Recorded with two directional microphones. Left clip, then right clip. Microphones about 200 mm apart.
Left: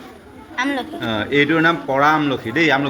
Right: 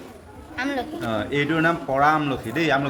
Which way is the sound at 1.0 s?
10° left (ahead or behind).